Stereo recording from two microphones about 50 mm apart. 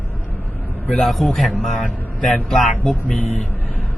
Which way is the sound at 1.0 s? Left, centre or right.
Centre.